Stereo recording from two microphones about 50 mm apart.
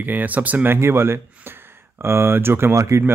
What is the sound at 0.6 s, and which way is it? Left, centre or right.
Speech, right.